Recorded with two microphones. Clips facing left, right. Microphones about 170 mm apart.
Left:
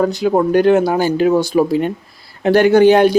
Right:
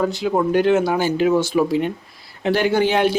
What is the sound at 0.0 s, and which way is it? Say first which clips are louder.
A man's voice: left 5 dB; 40° left (ahead or behind).